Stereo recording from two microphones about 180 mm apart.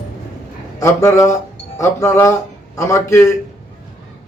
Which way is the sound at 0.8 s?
15° left (ahead or behind).